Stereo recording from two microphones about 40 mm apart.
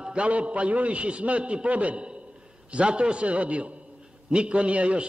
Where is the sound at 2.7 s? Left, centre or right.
Right.